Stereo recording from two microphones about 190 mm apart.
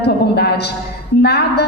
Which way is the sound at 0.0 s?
60° left (ahead or behind).